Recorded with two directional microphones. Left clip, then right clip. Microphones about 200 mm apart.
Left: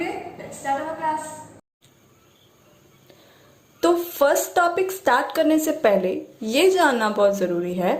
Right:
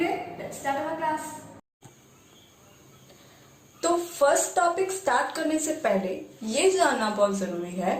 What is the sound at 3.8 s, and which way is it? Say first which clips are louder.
A woman's voice: left 4 dB; 40° left (ahead or behind).